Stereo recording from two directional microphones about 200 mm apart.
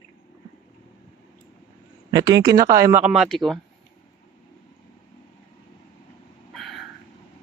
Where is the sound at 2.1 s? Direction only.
20° right (ahead or behind); by 3.6 s centre (ahead or behind).